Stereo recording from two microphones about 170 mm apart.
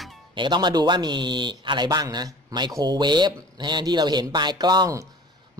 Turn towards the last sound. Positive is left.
turn(degrees=-20)  # may be behind; listen again after turning